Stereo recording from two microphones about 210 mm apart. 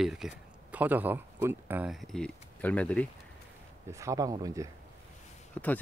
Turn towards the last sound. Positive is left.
turn(degrees=5)  # may be behind; listen again after turning